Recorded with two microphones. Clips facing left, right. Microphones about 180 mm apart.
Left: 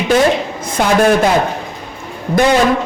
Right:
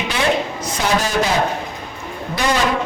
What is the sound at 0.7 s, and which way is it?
Speech, 55° left (ahead or behind).